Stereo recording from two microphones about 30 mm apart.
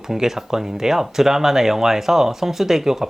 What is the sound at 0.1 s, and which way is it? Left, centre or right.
Speech, centre.